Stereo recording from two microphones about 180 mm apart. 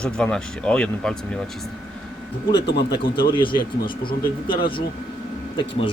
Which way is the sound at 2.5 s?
65° left (ahead or behind).